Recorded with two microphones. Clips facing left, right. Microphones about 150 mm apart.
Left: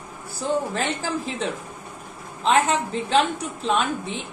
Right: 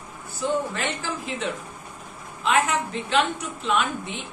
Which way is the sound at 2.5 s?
30° left (ahead or behind).